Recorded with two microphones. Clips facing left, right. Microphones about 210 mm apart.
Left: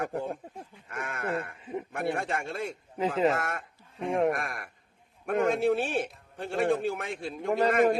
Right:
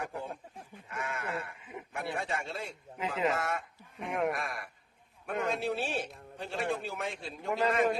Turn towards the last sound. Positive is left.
turn(degrees=50)  # may be behind; listen again after turning